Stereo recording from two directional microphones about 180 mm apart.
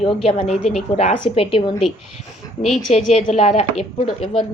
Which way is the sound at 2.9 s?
35° left (ahead or behind).